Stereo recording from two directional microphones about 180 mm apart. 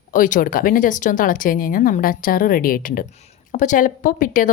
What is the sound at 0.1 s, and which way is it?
Speech, 45° left (ahead or behind).